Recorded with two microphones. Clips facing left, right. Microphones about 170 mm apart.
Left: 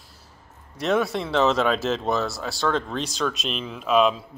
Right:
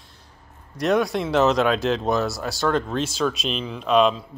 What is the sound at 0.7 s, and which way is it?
Speech, centre (ahead or behind).